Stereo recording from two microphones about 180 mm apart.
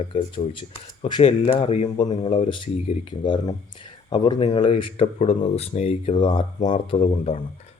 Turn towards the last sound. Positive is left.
turn(degrees=45)  # may be behind; listen again after turning